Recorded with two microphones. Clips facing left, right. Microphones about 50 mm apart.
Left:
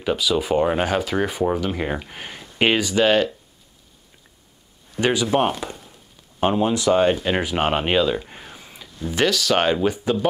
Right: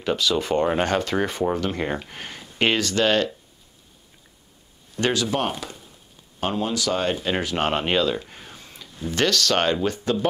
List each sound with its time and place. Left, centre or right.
0.0 s speech: centre
5.0 s speech: centre